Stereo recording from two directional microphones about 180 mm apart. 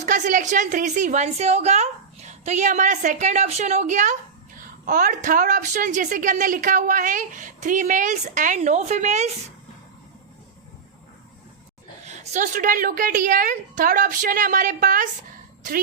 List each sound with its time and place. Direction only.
0.0 s a woman's voice: 45° right (ahead or behind)
12.0 s a woman's voice: 40° right (ahead or behind)